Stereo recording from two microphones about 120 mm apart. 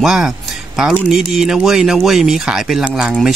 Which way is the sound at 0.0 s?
5° right (ahead or behind).